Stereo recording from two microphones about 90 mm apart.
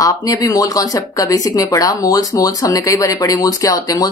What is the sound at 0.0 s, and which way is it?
Speech, 40° left (ahead or behind).